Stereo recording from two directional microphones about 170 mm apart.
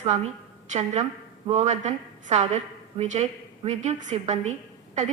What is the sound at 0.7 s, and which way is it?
A woman's voice, 40° right (ahead or behind).